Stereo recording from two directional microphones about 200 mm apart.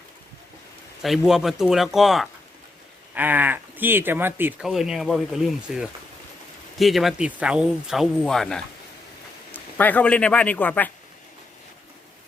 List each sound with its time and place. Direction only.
1.0 s a man's voice: centre (ahead or behind)